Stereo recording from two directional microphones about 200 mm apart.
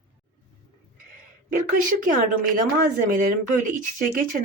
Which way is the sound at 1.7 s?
40° right (ahead or behind).